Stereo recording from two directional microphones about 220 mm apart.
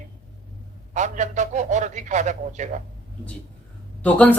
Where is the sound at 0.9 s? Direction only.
35° right (ahead or behind).